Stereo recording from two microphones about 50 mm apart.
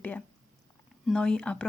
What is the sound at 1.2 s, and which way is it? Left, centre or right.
Speech, centre.